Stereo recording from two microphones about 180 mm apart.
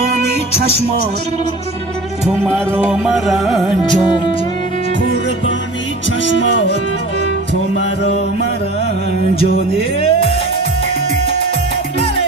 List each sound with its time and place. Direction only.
2.2 s music: 5° right (ahead or behind)
9.3 s music: 30° left (ahead or behind)